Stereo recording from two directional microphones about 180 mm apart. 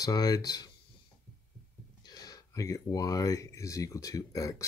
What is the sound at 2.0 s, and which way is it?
Speech, 20° left (ahead or behind).